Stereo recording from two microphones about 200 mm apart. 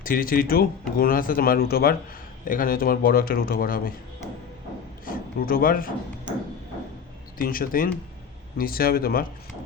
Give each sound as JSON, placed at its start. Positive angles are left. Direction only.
{"t": 0.0, "sound": "speech", "side_deg": 45}
{"t": 5.0, "sound": "speech", "side_deg": 45}
{"t": 7.3, "sound": "speech", "side_deg": 45}